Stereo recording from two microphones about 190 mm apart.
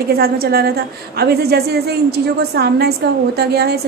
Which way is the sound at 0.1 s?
55° right (ahead or behind).